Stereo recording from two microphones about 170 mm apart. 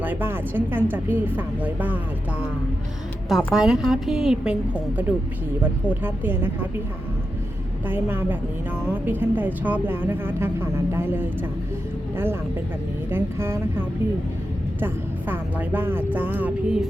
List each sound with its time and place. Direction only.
0.0 s speech: 10° right (ahead or behind)
3.2 s a woman's voice: centre (ahead or behind)
5.9 s speech: 10° right (ahead or behind)
7.9 s speech: 10° right (ahead or behind)